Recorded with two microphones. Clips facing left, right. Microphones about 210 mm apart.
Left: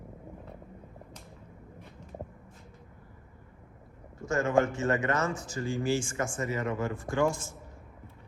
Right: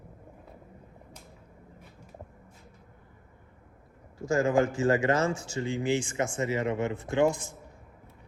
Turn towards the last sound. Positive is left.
turn(degrees=-20)  # may be behind; listen again after turning